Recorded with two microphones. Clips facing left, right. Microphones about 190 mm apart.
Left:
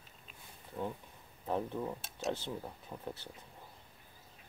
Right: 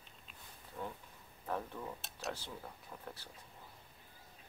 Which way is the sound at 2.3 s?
25° left (ahead or behind).